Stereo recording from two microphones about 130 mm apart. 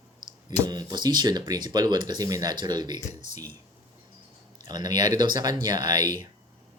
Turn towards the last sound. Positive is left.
turn(degrees=-30)  # may be behind; listen again after turning